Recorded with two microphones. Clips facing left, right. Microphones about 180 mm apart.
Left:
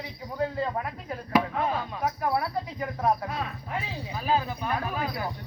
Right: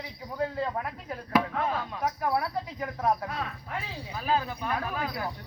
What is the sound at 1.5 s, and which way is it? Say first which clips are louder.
Speech: left 2 dB; 15° left (ahead or behind).